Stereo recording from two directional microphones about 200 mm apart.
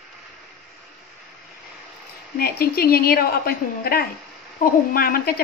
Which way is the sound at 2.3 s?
50° left (ahead or behind).